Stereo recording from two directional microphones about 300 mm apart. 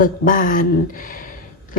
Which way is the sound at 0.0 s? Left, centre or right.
Left.